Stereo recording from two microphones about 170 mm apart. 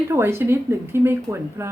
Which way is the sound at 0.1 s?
15° right (ahead or behind).